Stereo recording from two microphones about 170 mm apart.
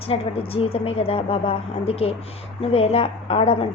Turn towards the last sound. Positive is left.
turn(degrees=35)  # may be behind; listen again after turning